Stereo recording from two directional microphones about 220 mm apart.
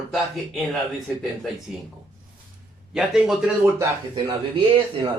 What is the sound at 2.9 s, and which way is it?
Speech, centre (ahead or behind).